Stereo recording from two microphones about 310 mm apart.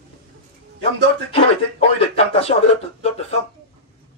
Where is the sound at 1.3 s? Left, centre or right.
Centre.